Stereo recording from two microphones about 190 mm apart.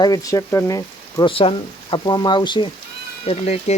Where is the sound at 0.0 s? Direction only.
20° left (ahead or behind).